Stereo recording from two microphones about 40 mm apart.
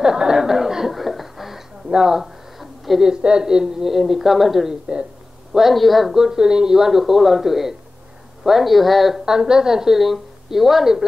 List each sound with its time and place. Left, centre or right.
0.0 s speech: centre
0.9 s chuckle: centre
1.9 s a sound: centre
3.1 s a woman's voice: centre
3.9 s a woman's voice: centre
4.6 s speech: right
5.5 s a woman's voice: centre
6.1 s a woman's voice: centre
9.2 s a woman's voice: centre